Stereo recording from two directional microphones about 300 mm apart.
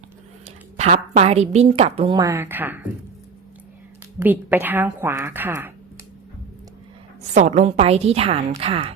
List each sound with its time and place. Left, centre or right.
0.4 s a woman's voice: right; by 2.8 s centre
4.2 s a woman's voice: centre
7.3 s a woman's voice: right